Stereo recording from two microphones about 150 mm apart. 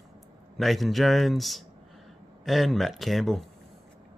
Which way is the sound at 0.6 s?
Centre (ahead or behind).